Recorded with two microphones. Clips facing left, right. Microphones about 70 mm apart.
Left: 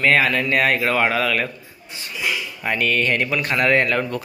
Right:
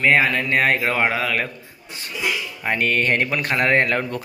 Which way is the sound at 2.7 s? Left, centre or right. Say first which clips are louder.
Even; right.